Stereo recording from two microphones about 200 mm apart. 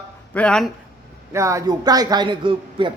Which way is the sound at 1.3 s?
15° right (ahead or behind).